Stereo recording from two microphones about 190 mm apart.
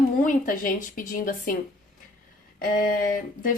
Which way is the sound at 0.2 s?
45° left (ahead or behind).